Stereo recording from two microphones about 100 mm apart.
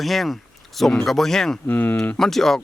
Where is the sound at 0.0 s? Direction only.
Centre (ahead or behind).